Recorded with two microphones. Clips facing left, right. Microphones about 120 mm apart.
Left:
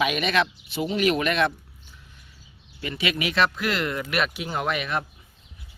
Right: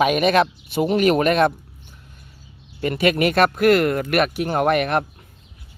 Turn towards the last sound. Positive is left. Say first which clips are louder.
# right 8 dB
turn(degrees=-60)  # may be behind; listen again after turning